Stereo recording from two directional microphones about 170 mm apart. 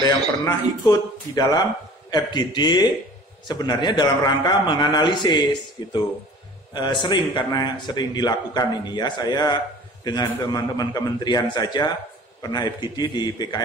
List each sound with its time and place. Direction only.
0.0 s speech: 20° left (ahead or behind)